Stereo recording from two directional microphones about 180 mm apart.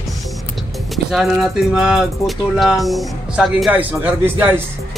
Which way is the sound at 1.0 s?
Centre (ahead or behind).